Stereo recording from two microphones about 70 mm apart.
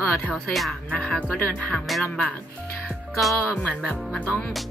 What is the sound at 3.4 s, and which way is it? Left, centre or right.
Speech, left.